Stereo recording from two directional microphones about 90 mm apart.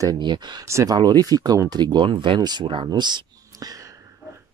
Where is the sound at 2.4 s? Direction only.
50° right (ahead or behind).